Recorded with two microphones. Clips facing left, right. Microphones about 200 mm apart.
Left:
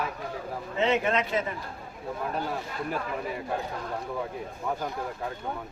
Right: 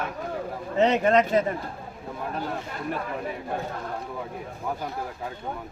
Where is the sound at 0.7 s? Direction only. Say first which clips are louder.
Right 5 dB; 40° right (ahead or behind).